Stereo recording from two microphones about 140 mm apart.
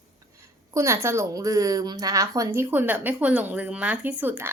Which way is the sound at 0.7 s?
20° right (ahead or behind).